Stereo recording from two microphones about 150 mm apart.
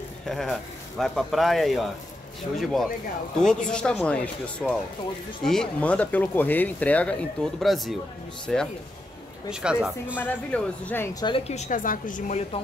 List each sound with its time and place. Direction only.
0.3 s speech: centre (ahead or behind)
10.1 s speech: 10° left (ahead or behind)
11.1 s a woman's voice: 30° left (ahead or behind)
11.4 s a woman's voice: 50° left (ahead or behind)